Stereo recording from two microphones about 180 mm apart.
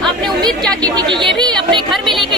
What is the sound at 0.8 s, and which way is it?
Speech, 25° right (ahead or behind).